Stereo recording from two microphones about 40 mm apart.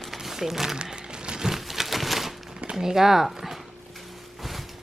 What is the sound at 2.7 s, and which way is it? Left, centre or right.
Speech, centre.